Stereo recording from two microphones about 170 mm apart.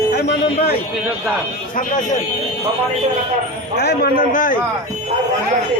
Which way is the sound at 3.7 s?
65° left (ahead or behind).